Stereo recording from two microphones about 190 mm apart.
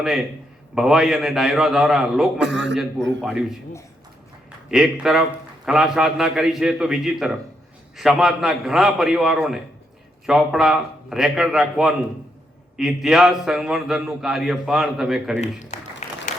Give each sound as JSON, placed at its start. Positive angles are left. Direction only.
{"t": 0.8, "sound": "a man's voice", "side_deg": -5}
{"t": 2.4, "sound": "a man's voice", "side_deg": -70}
{"t": 3.2, "sound": "a man's voice", "side_deg": -5}
{"t": 4.7, "sound": "a man's voice", "side_deg": -5}
{"t": 15.4, "sound": "speech", "side_deg": 35}